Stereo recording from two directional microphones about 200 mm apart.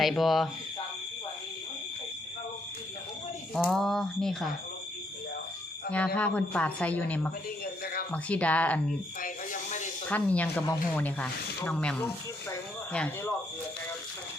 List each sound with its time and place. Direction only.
0.0 s speech: centre (ahead or behind)
3.5 s speech: centre (ahead or behind)
6.1 s speech: 5° left (ahead or behind)
9.2 s music: 40° left (ahead or behind)
10.1 s speech: 5° left (ahead or behind)